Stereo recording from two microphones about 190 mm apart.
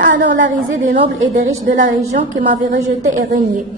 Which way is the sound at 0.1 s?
70° right (ahead or behind).